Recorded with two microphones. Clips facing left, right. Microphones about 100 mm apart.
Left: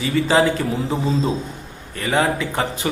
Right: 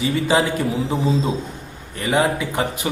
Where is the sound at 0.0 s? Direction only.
20° right (ahead or behind).